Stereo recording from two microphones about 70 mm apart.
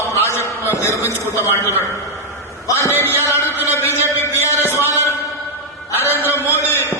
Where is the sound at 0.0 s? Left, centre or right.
Left.